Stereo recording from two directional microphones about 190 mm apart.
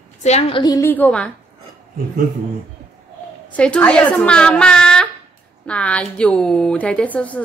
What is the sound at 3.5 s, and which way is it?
A woman's voice, 5° left (ahead or behind).